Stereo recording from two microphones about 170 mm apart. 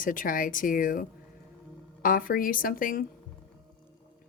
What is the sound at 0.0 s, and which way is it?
A woman's voice, 55° left (ahead or behind).